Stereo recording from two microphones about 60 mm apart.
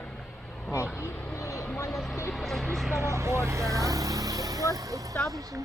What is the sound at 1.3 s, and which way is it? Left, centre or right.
Speech, left.